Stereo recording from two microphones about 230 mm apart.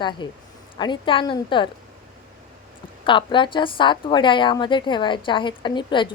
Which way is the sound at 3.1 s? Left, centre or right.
Left.